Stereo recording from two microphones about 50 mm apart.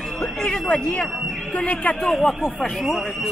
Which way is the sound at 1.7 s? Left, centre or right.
Left.